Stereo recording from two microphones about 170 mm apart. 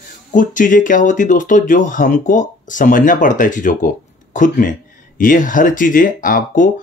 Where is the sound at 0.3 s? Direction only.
50° left (ahead or behind).